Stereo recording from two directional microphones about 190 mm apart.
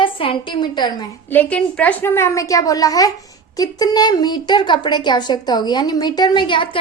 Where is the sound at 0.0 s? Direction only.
25° left (ahead or behind).